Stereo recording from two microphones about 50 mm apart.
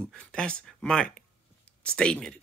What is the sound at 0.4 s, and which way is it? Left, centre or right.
Speech, centre.